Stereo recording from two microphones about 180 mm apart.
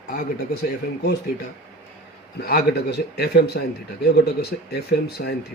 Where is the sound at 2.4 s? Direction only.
60° left (ahead or behind).